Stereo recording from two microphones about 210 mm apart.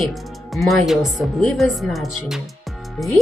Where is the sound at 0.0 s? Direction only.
Centre (ahead or behind).